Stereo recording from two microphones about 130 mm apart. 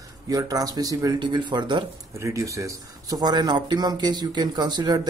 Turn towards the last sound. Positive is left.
turn(degrees=-30)  # may be behind; listen again after turning